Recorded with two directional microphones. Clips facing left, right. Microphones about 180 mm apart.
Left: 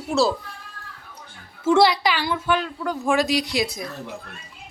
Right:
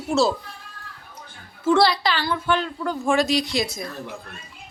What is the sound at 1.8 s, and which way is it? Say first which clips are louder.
Speech: left 4 dB; 15° left (ahead or behind).